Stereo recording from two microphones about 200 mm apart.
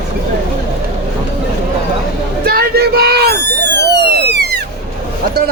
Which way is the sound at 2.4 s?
50° right (ahead or behind).